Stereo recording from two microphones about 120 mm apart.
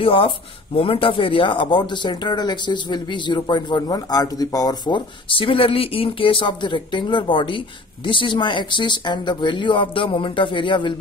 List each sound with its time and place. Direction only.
0.0 s speech: 50° left (ahead or behind)